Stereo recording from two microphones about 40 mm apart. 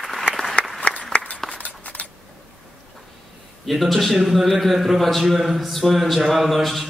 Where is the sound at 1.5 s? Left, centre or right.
Left.